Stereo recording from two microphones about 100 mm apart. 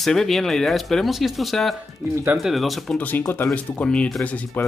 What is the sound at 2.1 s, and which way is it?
Speech, 20° right (ahead or behind).